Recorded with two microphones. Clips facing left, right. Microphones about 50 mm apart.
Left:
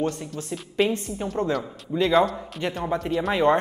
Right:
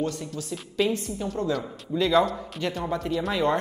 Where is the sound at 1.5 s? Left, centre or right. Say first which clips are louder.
Left 1 dB; centre.